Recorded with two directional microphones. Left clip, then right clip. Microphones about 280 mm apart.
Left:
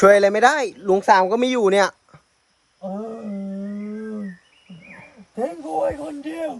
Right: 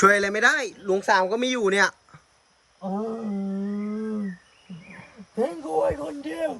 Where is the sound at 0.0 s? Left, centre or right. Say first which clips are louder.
Left 6 dB; centre.